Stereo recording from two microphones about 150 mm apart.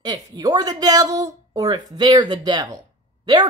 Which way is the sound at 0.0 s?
25° right (ahead or behind).